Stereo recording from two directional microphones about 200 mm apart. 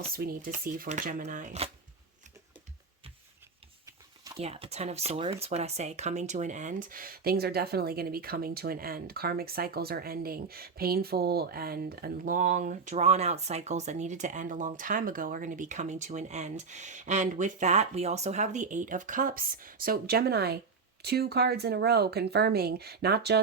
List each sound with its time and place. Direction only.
0.1 s speech: 45° right (ahead or behind)
3.8 s a sound: 15° right (ahead or behind)
4.4 s speech: 30° right (ahead or behind); by 23.4 s 55° right (ahead or behind)